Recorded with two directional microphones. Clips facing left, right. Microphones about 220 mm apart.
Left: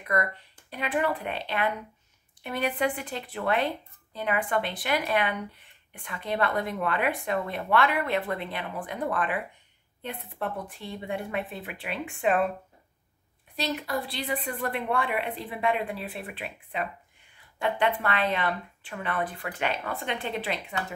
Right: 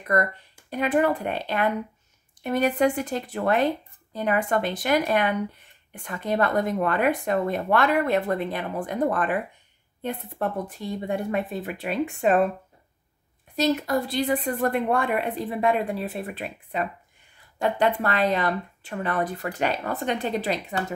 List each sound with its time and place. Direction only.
0.0 s speech: 45° right (ahead or behind)
13.6 s speech: 45° right (ahead or behind)